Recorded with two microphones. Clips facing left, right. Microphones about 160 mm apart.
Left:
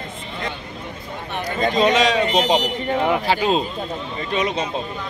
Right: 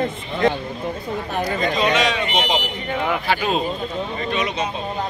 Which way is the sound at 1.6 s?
35° left (ahead or behind).